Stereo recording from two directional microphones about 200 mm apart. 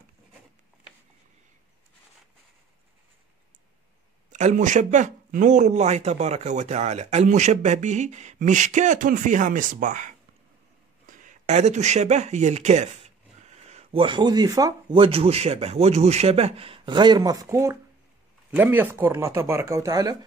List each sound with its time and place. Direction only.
4.3 s speech: 35° right (ahead or behind); by 20.2 s 20° right (ahead or behind)